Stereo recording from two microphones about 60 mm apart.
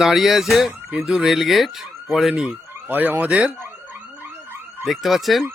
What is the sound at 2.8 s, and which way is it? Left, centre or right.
Speech, right.